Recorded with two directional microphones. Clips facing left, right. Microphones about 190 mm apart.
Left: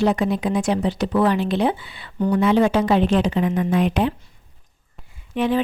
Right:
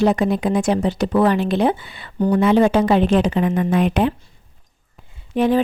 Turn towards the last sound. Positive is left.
turn(degrees=-40)  # may be behind; listen again after turning